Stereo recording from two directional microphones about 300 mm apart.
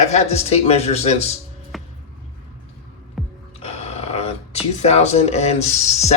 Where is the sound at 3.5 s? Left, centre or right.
Left.